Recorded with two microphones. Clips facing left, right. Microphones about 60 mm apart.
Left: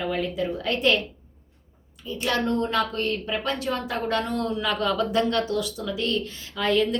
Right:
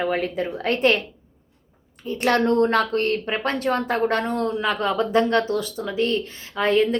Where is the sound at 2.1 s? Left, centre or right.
Right.